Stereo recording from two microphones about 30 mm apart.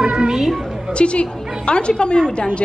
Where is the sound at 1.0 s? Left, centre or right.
Left.